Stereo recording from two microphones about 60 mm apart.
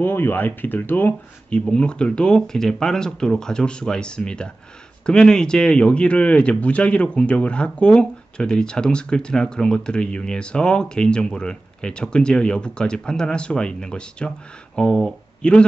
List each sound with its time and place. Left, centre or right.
0.0 s speech: left
1.5 s speech: centre